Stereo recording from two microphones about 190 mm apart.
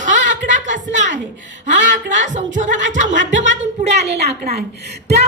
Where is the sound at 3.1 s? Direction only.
70° right (ahead or behind).